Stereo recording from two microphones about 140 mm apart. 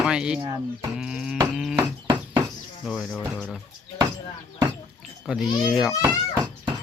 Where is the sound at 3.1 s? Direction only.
5° left (ahead or behind).